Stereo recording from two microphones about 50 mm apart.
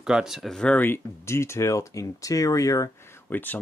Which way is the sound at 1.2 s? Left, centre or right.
Left.